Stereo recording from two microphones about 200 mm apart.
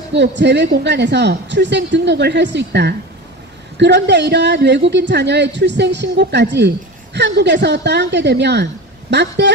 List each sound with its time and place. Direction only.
0.1 s a woman's voice: 60° right (ahead or behind)